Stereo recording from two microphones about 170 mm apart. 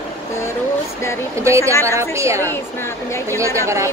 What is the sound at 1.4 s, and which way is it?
Speech, 15° right (ahead or behind).